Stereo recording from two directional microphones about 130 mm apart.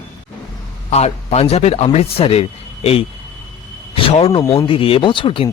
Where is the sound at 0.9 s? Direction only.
55° left (ahead or behind).